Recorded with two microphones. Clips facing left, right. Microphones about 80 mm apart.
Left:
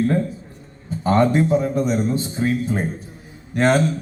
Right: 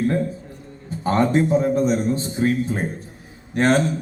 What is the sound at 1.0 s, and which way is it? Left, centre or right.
A man's voice, right.